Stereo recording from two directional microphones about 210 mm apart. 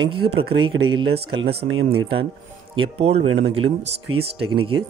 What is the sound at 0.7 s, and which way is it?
Speech, 75° right (ahead or behind).